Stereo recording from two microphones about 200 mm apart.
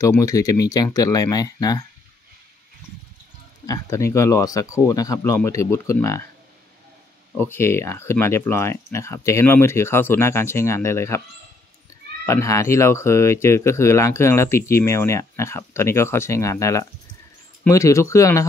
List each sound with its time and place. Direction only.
0.0 s speech: 15° left (ahead or behind)
3.6 s speech: 15° left (ahead or behind)
7.3 s speech: 10° left (ahead or behind)